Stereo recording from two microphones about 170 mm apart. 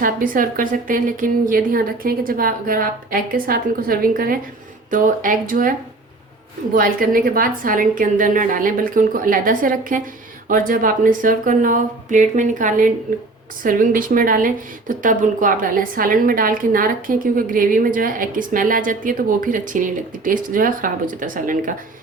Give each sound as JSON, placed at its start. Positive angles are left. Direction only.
{"t": 0.0, "sound": "a woman's voice", "side_deg": -55}
{"t": 6.7, "sound": "speech", "side_deg": -55}